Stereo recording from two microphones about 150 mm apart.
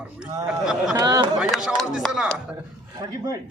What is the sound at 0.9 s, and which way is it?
Speech, 25° right (ahead or behind).